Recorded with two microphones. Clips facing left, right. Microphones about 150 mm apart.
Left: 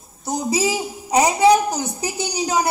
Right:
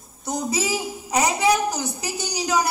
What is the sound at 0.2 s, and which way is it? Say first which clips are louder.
A woman's voice: left 4 dB; 10° left (ahead or behind).